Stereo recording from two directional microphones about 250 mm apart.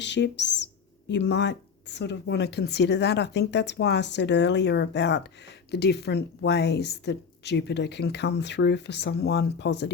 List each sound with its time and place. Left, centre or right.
0.0 s speech: left